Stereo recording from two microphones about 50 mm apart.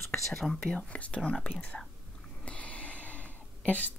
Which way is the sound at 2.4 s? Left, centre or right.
Left.